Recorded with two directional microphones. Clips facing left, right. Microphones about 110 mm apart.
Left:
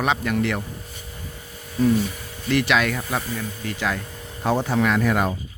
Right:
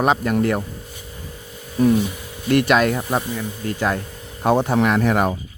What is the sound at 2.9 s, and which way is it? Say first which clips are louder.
Speech: right 4 dB; 20° right (ahead or behind).